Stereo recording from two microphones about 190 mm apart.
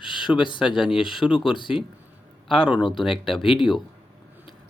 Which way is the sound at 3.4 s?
25° left (ahead or behind).